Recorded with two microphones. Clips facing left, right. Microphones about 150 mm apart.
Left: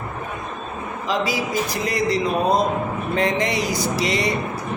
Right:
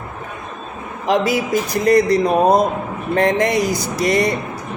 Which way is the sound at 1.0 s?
60° right (ahead or behind).